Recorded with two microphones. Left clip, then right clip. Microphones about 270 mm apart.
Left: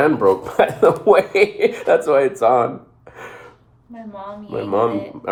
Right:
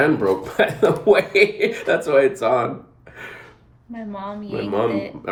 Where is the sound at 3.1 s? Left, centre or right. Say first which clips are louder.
Left 1 dB; centre.